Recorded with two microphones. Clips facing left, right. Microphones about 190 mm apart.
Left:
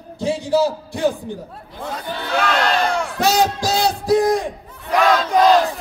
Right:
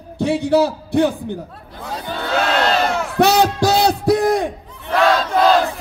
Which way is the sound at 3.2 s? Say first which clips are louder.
Right 4 dB; 60° right (ahead or behind).